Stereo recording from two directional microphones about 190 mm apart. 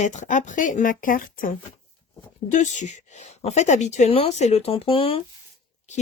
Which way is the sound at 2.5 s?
40° left (ahead or behind).